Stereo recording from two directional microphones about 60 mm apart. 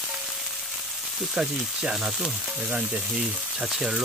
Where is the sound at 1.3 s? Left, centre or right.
Centre.